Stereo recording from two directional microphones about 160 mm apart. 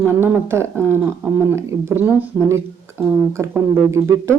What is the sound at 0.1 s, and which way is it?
A man's voice, 15° right (ahead or behind).